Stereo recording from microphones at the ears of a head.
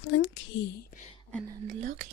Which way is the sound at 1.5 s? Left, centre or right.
Right.